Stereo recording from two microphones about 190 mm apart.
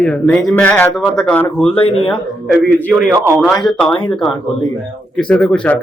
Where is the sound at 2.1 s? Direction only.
5° left (ahead or behind).